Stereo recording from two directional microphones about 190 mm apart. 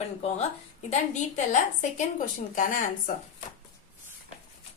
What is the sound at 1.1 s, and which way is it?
A woman's voice, 40° left (ahead or behind).